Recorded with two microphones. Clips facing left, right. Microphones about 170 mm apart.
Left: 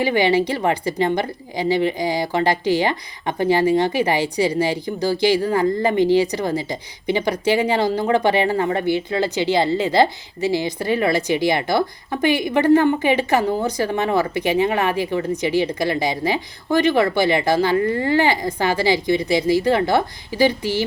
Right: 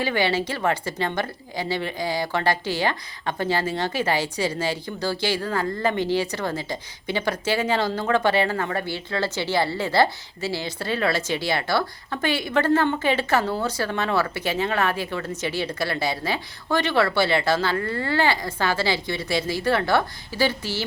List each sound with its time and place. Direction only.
0.0 s a woman's voice: 15° left (ahead or behind)